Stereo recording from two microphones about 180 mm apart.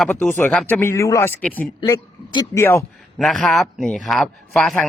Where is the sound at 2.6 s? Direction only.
15° left (ahead or behind).